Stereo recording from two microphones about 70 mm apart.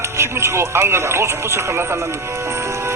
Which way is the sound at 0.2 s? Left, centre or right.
Right.